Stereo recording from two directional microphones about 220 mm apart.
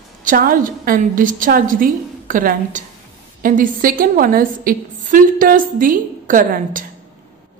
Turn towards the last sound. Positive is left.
turn(degrees=-40)  # may be behind; listen again after turning